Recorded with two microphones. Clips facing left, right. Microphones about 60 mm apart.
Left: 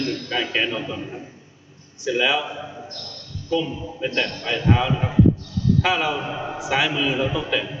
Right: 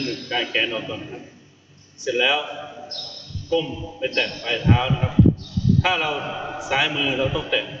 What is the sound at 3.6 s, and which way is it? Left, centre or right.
A man's voice, centre.